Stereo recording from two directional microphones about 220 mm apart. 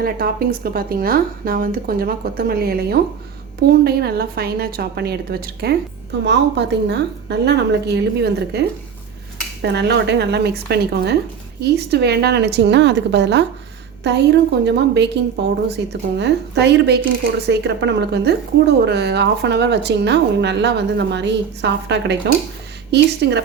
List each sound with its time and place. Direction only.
0.0 s a woman's voice: 45° right (ahead or behind)